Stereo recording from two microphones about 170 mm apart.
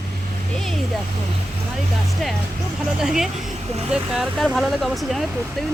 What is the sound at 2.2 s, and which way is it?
Speech, centre (ahead or behind).